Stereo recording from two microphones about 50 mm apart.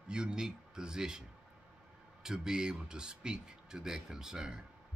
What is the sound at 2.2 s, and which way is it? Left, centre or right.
Speech, centre.